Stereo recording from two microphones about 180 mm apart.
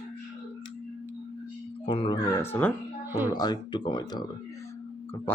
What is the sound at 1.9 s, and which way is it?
Music, 30° left (ahead or behind).